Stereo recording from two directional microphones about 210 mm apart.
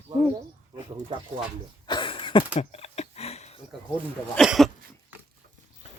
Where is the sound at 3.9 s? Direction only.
Centre (ahead or behind).